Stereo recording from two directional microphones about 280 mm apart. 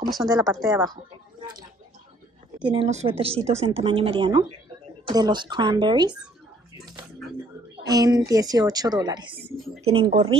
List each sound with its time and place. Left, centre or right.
0.3 s a woman's voice: centre
1.4 s a sound: centre
2.6 s a woman's voice: centre
7.8 s a woman's voice: centre